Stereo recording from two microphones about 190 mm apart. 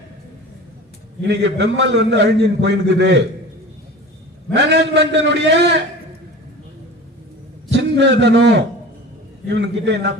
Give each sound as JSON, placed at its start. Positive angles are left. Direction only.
{"t": 1.2, "sound": "a man's voice", "side_deg": -65}
{"t": 4.5, "sound": "a man's voice", "side_deg": -65}
{"t": 7.7, "sound": "a man's voice", "side_deg": -65}